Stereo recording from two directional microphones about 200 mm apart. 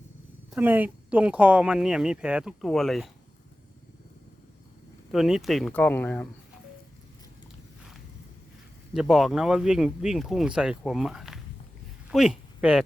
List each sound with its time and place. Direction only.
0.5 s speech: 10° right (ahead or behind)
5.1 s speech: centre (ahead or behind)
8.9 s speech: centre (ahead or behind)